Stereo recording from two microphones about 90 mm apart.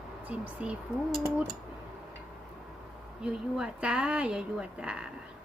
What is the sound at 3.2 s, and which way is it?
Speech, 10° right (ahead or behind).